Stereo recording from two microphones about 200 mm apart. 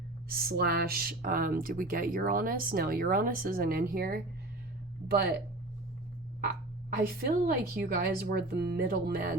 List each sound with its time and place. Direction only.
0.3 s speech: 50° right (ahead or behind)
6.9 s speech: 50° right (ahead or behind)